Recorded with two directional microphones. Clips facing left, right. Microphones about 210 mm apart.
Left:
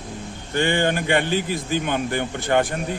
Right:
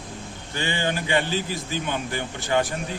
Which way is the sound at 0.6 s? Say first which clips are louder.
Left 6 dB; 55° left (ahead or behind).